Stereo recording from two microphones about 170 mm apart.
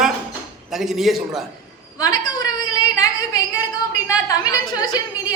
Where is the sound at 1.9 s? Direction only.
20° left (ahead or behind).